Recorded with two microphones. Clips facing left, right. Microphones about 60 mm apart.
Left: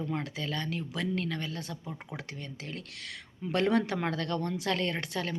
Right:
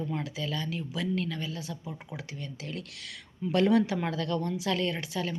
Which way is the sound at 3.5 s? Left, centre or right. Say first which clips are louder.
Right 3 dB; left.